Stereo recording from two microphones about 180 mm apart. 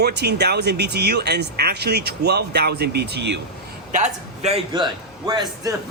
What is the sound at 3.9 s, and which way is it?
Speech, 40° right (ahead or behind).